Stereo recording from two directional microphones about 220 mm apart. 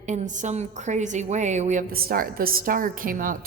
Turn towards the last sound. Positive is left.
turn(degrees=-40)  # may be behind; listen again after turning